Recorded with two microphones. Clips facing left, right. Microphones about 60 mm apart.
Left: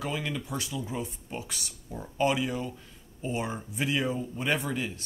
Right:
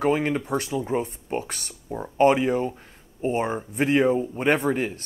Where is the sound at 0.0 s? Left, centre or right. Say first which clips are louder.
Right 11 dB; right.